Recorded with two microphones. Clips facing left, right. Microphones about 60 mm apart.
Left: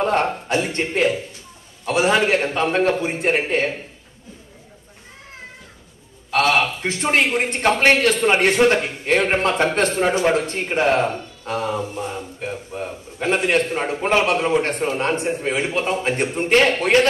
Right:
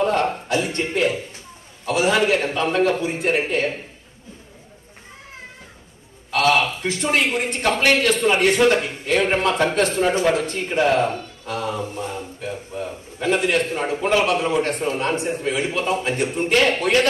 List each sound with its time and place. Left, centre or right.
0.0 s a sound: left
0.5 s a man's voice: left
6.3 s a man's voice: left